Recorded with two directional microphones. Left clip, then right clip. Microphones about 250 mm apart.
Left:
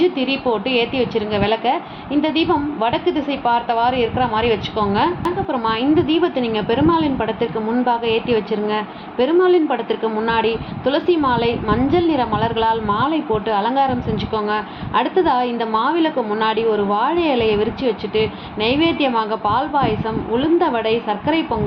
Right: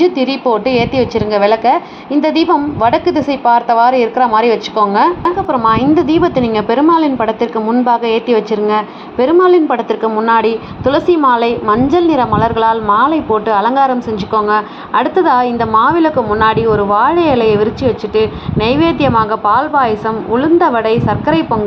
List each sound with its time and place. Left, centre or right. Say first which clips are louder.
0.0 s a woman's voice: right 6 dB; right